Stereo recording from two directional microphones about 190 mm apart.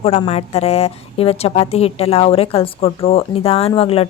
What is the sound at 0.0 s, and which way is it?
A woman's voice, 35° left (ahead or behind).